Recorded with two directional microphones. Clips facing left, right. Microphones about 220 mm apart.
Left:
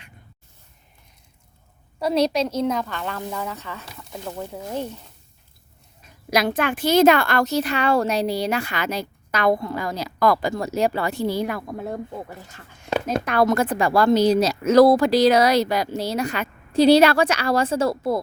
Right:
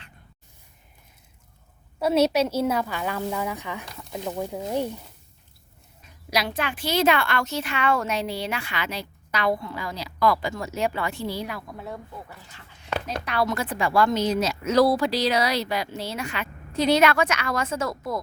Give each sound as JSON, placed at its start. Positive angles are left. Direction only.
{"t": 2.0, "sound": "a woman's voice", "side_deg": -5}
{"t": 6.3, "sound": "a woman's voice", "side_deg": 50}